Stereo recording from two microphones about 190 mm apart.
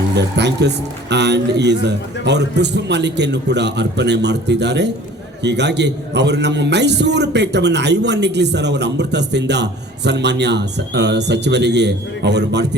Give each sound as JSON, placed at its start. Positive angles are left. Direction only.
{"t": 0.2, "sound": "a man's voice", "side_deg": -65}